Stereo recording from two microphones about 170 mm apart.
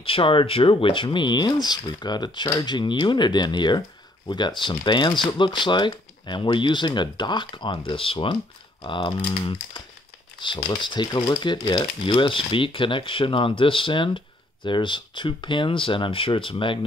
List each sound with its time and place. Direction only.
0.0 s speech: 30° left (ahead or behind)